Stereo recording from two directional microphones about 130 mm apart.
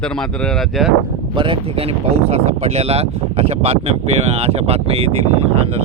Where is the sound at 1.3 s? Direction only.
40° right (ahead or behind).